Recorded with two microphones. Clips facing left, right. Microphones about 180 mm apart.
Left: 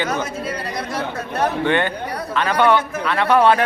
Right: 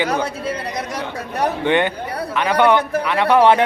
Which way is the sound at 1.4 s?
15° right (ahead or behind).